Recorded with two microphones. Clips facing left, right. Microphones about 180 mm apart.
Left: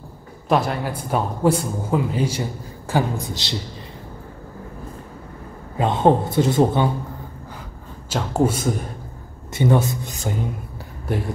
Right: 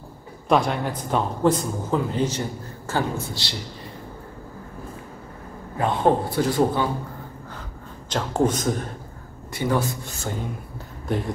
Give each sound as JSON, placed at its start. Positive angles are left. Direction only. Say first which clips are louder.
{"t": 0.5, "sound": "a man's voice", "louder": "even", "side_deg": 5}
{"t": 5.8, "sound": "a man's voice", "louder": "left 3 dB", "side_deg": 20}
{"t": 8.1, "sound": "a man's voice", "louder": "left 2 dB", "side_deg": 10}
{"t": 9.5, "sound": "a man's voice", "louder": "left 4 dB", "side_deg": 20}